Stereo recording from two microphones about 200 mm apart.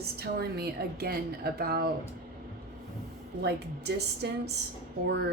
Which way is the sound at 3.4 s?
55° right (ahead or behind).